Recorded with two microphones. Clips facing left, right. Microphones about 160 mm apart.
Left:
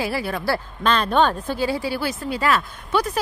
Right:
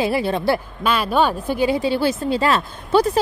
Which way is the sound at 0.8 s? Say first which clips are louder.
Left 1 dB; 5° right (ahead or behind).